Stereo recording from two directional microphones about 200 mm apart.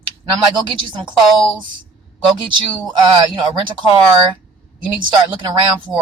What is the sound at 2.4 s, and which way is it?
Speech, 20° right (ahead or behind).